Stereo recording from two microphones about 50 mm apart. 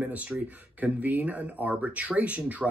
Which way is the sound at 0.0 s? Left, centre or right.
Right.